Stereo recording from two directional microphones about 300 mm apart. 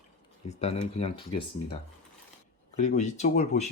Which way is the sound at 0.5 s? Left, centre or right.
Left.